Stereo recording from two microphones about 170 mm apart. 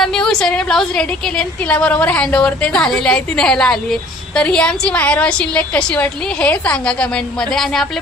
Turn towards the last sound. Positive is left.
turn(degrees=0)  # may be behind; listen again after turning